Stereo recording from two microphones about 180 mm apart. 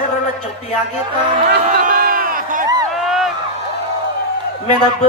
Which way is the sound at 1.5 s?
55° right (ahead or behind).